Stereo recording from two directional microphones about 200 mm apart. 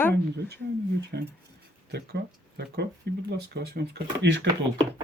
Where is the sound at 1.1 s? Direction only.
50° right (ahead or behind).